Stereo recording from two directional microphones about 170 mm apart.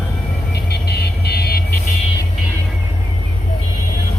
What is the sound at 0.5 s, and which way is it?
Vehicle, 70° left (ahead or behind).